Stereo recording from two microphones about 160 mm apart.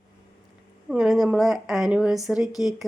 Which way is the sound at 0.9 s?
Centre (ahead or behind).